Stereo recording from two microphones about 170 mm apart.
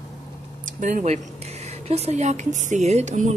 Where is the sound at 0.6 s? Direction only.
50° right (ahead or behind).